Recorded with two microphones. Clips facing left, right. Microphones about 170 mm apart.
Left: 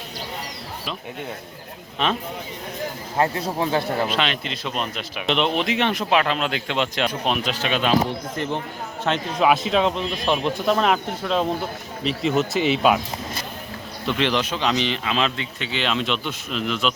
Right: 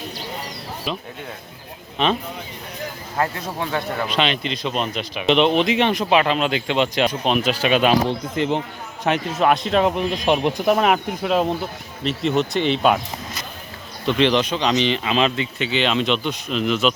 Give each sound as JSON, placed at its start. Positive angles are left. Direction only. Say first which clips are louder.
{"t": 3.2, "sound": "speech", "louder": "left 2 dB", "side_deg": 25}
{"t": 4.1, "sound": "speech", "louder": "right 3 dB", "side_deg": 0}
{"t": 7.6, "sound": "speech", "louder": "right 3 dB", "side_deg": -10}
{"t": 9.4, "sound": "speech", "louder": "right 1 dB", "side_deg": 0}
{"t": 9.9, "sound": "speech", "louder": "right 4 dB", "side_deg": -15}
{"t": 14.2, "sound": "speech", "louder": "right 5 dB", "side_deg": 5}